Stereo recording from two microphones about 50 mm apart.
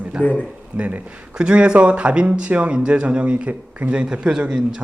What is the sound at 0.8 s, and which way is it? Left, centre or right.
Speech, right.